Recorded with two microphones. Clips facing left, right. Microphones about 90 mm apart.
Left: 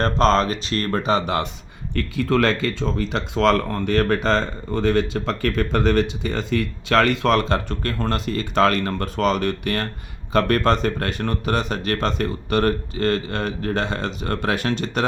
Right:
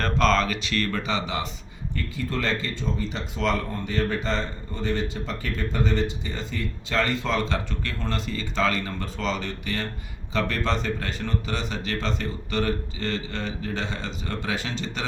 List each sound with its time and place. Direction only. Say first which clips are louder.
0.0 s speech: left 4 dB; 35° left (ahead or behind)
2.0 s speech: left 10 dB; 85° left; by 15.0 s 55° left (ahead or behind)